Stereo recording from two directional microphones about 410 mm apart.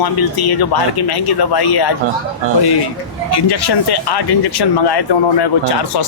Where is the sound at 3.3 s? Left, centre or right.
Left.